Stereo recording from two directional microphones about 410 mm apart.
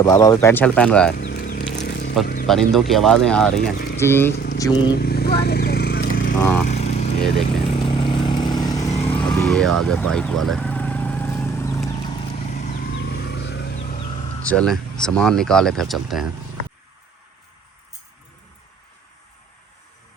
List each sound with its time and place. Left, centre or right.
0.0 s speech: centre
1.1 s a sound: left
2.2 s speech: left
2.5 s speech: centre
3.7 s speech: left
4.0 s speech: centre
4.9 s vehicle: left
14.4 s speech: centre